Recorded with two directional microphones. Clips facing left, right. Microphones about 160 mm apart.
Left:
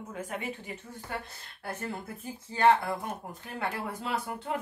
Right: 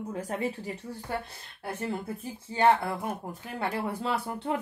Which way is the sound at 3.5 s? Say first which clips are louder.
Right 3 dB; 30° right (ahead or behind).